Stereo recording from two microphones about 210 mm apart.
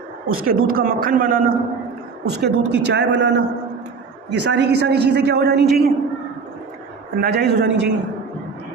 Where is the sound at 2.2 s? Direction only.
55° right (ahead or behind).